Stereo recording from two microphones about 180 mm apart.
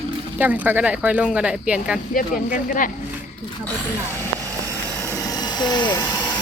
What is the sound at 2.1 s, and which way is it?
Speech, 50° left (ahead or behind).